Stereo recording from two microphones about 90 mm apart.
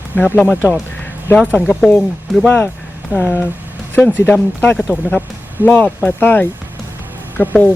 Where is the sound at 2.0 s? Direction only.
Centre (ahead or behind).